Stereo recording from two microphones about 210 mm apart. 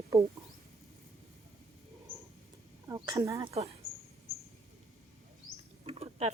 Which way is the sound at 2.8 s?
20° right (ahead or behind).